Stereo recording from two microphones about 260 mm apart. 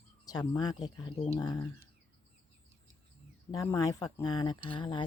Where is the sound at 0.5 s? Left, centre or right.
Centre.